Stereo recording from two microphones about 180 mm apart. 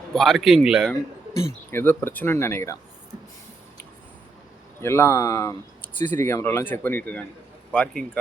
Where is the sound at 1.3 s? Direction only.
15° left (ahead or behind).